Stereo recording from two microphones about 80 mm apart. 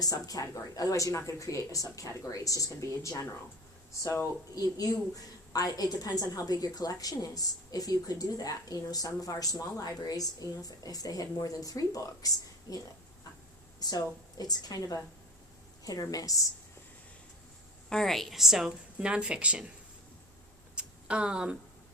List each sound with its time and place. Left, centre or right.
0.0 s a woman's voice: left
4.5 s a woman's voice: left
17.8 s speech: centre
20.7 s a sound: centre